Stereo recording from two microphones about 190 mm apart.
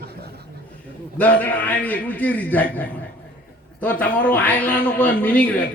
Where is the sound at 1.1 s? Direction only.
10° left (ahead or behind).